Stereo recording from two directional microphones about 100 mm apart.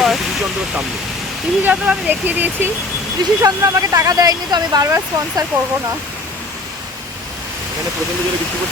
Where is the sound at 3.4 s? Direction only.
30° right (ahead or behind).